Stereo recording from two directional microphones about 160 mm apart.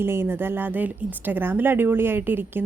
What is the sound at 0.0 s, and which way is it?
Speech, 15° right (ahead or behind).